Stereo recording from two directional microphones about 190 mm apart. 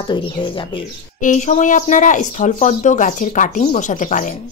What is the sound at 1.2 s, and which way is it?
Speech, 40° left (ahead or behind).